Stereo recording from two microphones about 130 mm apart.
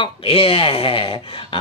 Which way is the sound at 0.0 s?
45° left (ahead or behind).